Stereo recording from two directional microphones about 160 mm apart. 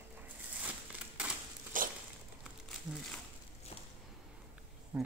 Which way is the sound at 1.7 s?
55° right (ahead or behind).